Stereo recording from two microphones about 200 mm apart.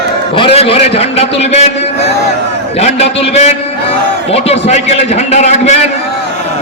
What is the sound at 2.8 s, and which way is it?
A man's voice, 30° left (ahead or behind).